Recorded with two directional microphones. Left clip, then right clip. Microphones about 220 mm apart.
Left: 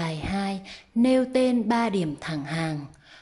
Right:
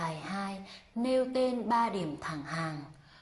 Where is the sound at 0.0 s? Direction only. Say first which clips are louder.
Left 6 dB; 20° left (ahead or behind).